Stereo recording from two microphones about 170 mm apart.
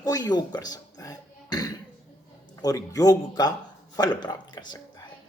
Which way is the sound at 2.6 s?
20° left (ahead or behind).